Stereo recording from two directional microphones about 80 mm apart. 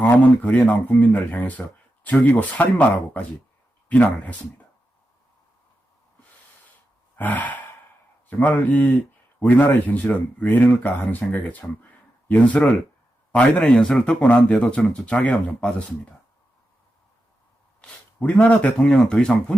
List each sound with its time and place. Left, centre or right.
0.0 s a man's voice: centre
7.2 s gasp: left
8.4 s a man's voice: centre
17.7 s speech: centre